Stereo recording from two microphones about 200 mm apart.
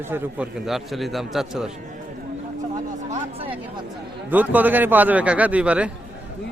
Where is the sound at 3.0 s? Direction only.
30° right (ahead or behind).